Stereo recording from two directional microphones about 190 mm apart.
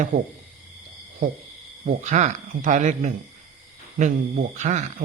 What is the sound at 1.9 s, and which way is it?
Speech, 40° right (ahead or behind).